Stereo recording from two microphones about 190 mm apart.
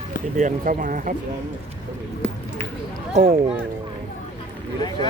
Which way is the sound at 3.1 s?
35° right (ahead or behind).